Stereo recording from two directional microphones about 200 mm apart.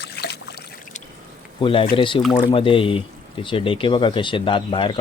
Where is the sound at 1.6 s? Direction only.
25° left (ahead or behind).